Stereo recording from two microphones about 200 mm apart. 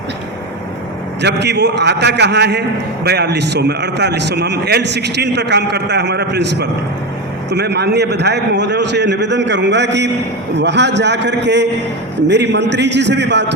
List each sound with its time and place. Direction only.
1.2 s a man's voice: 60° right (ahead or behind)